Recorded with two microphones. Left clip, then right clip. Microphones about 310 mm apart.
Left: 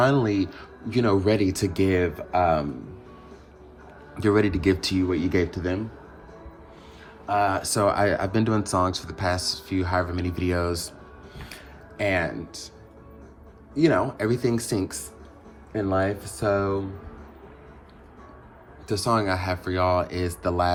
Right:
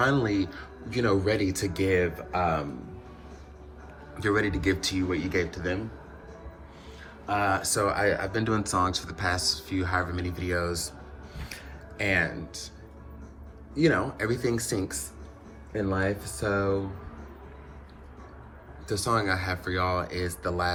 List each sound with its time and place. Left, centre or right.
0.0 s speech: centre
4.2 s speech: centre
7.3 s speech: centre
11.9 s speech: centre
13.7 s speech: centre
18.9 s speech: centre